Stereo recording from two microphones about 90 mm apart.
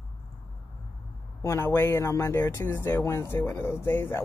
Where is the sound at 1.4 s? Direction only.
30° left (ahead or behind).